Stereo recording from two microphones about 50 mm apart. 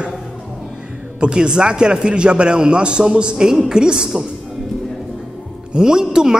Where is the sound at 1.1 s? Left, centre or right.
Centre.